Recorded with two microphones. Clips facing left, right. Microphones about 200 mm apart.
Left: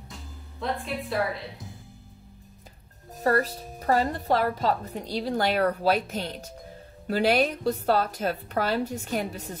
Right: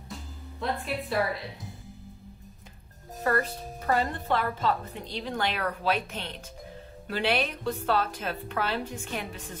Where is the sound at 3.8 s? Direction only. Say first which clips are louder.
Left 3 dB; 35° left (ahead or behind).